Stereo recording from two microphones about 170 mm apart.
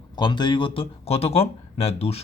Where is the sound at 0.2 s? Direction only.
25° left (ahead or behind).